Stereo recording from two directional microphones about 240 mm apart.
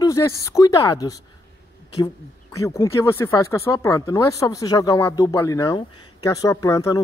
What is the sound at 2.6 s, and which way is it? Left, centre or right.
Speech, centre.